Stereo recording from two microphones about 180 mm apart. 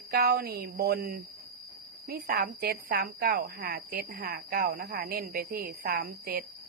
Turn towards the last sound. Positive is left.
turn(degrees=-55)  # may be behind; listen again after turning